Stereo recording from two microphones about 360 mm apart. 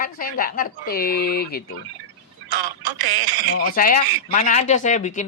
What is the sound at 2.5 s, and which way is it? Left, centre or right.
Speech, right.